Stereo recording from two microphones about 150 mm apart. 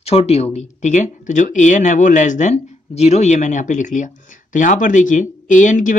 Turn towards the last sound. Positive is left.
turn(degrees=60)  # may be behind; listen again after turning